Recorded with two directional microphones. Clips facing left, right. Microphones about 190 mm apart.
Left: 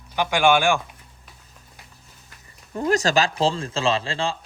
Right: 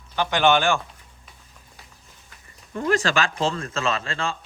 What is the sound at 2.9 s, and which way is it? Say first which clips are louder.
Speech: left 2 dB; 40° left (ahead or behind).